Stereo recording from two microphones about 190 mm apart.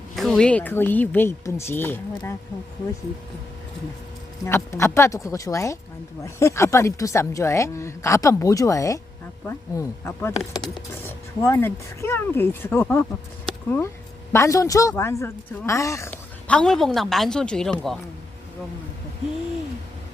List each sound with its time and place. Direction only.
0.2 s speech: centre (ahead or behind)
4.4 s speech: 15° left (ahead or behind)